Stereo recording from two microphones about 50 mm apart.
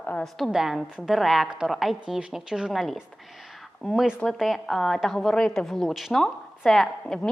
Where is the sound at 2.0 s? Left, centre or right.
Centre.